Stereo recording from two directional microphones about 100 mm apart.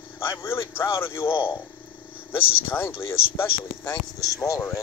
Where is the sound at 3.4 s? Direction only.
35° left (ahead or behind).